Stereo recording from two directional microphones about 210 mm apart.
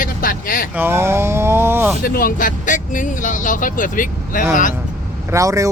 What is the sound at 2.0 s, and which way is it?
Speech, 45° left (ahead or behind).